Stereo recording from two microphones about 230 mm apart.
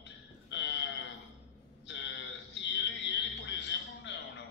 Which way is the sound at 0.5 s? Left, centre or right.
Left.